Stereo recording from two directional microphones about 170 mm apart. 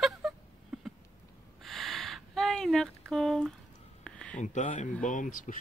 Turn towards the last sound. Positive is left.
turn(degrees=50)  # may be behind; listen again after turning